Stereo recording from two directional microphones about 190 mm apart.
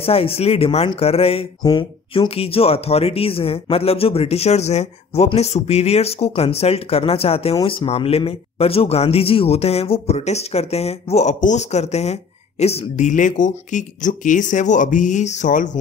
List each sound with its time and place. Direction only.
0.0 s speech: 30° left (ahead or behind)